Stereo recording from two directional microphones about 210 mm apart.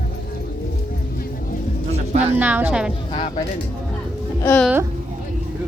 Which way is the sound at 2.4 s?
10° right (ahead or behind).